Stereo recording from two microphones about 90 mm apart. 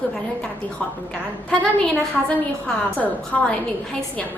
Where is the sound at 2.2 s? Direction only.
15° left (ahead or behind).